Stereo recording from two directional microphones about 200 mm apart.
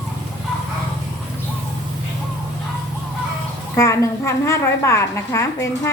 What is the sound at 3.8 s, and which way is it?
A woman's voice, 15° left (ahead or behind).